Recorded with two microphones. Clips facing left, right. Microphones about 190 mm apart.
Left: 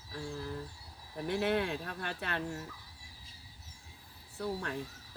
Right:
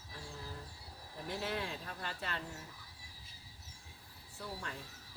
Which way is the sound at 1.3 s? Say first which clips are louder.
Left 8 dB; 65° left (ahead or behind).